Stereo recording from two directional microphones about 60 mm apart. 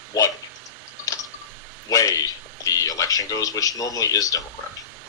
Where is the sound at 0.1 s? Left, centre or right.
Left.